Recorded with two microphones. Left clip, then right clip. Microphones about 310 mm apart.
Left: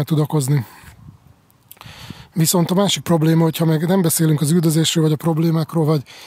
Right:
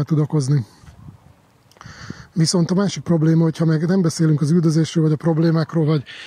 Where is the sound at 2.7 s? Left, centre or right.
Centre.